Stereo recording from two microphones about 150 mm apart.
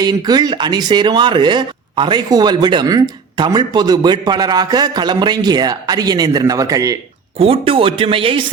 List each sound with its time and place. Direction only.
0.0 s speech: 25° right (ahead or behind)
7.3 s speech: 40° right (ahead or behind)